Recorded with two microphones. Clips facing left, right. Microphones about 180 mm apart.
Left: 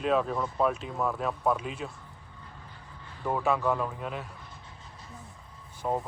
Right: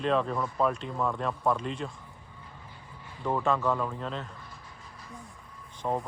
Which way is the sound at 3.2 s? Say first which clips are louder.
Even; 5° left (ahead or behind).